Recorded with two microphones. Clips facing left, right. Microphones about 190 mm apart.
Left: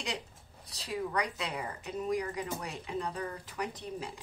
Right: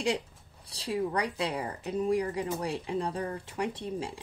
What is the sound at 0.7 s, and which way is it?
A woman's voice, 30° right (ahead or behind).